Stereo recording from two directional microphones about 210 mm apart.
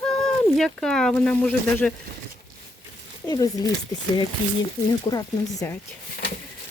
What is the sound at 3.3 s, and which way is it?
Speech, 20° left (ahead or behind).